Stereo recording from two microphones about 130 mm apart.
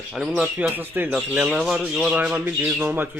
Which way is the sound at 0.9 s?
10° right (ahead or behind).